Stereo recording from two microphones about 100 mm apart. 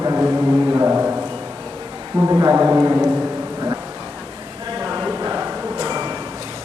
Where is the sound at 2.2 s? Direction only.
30° right (ahead or behind).